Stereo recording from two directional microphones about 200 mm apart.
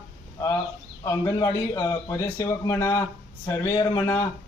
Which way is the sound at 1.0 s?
15° left (ahead or behind).